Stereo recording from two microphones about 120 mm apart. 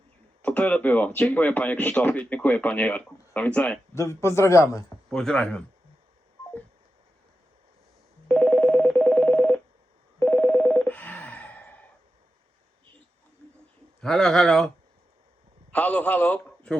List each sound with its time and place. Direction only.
0.4 s speech: 10° left (ahead or behind)
3.9 s a man's voice: 25° left (ahead or behind)
5.0 s speech: 5° left (ahead or behind)
8.3 s telephone: 10° left (ahead or behind)
10.2 s a sound: 15° left (ahead or behind)
14.0 s speech: 5° left (ahead or behind)
15.7 s a man's voice: 10° left (ahead or behind)